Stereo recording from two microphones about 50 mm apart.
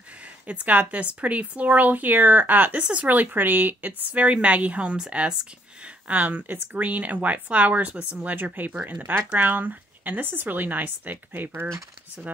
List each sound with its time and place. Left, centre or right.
0.2 s speech: right
4.2 s a woman's voice: right